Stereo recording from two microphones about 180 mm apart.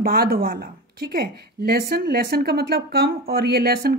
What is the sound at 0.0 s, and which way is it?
Speech, 55° right (ahead or behind).